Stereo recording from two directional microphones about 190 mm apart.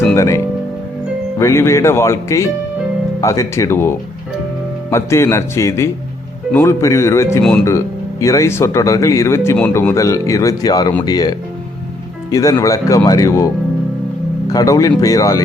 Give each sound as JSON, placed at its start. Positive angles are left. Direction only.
{"t": 0.1, "sound": "speech", "side_deg": 15}
{"t": 14.5, "sound": "speech", "side_deg": 15}